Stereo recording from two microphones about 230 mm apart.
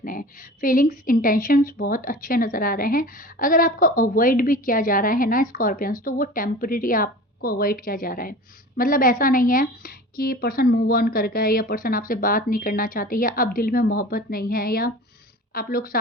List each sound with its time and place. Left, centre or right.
0.0 s a woman's voice: left